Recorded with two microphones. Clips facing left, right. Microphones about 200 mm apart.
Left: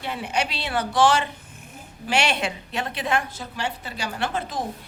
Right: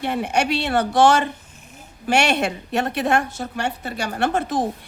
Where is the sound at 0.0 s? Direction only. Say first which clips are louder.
Right 5 dB; 55° right (ahead or behind).